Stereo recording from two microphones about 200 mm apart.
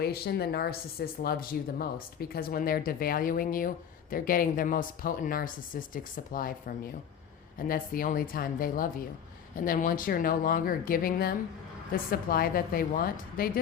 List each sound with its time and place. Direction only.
0.0 s speech: 50° left (ahead or behind)